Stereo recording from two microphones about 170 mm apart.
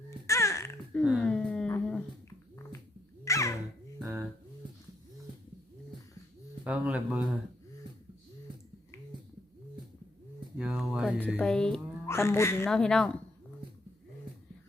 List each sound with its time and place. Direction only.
0.3 s babbling: 15° left (ahead or behind)
1.1 s a sound: 5° left (ahead or behind)
3.2 s babbling: 15° left (ahead or behind)
6.7 s speech: 10° right (ahead or behind)
10.6 s a sound: 5° right (ahead or behind)
11.3 s speech: 5° left (ahead or behind)
12.0 s speech: 15° left (ahead or behind)
12.6 s speech: 5° left (ahead or behind)